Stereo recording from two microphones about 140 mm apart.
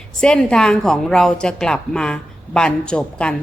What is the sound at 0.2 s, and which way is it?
A woman's voice, 5° left (ahead or behind).